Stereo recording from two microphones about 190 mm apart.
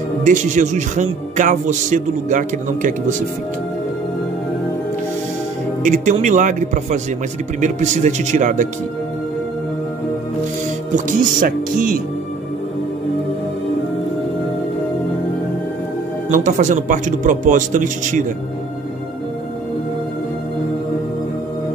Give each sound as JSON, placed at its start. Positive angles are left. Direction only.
{"t": 0.2, "sound": "a man's voice", "side_deg": -40}
{"t": 5.8, "sound": "a man's voice", "side_deg": -40}
{"t": 11.1, "sound": "music", "side_deg": -45}
{"t": 16.3, "sound": "a man's voice", "side_deg": -40}